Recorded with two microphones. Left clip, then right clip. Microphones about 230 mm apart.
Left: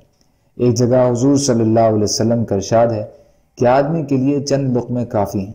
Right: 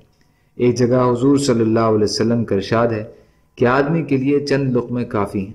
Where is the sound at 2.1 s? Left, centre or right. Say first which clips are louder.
Left 1 dB; centre.